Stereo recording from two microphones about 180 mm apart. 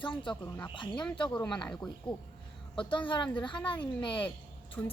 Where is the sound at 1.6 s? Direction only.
5° left (ahead or behind).